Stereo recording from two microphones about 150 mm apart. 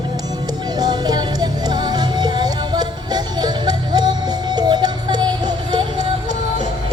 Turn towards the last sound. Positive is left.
turn(degrees=-30)  # may be behind; listen again after turning